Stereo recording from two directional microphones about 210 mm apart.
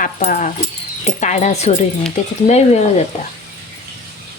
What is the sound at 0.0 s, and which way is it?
A woman's voice, 35° left (ahead or behind).